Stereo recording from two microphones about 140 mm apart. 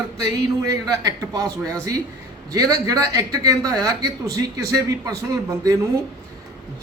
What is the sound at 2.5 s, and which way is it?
A man's voice, 25° right (ahead or behind).